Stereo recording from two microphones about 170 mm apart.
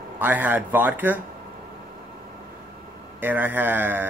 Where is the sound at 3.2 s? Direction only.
10° right (ahead or behind).